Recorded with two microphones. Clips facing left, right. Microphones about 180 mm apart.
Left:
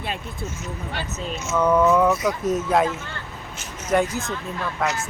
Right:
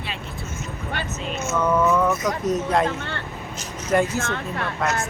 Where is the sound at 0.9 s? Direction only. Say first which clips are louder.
Right 3 dB; 50° right (ahead or behind).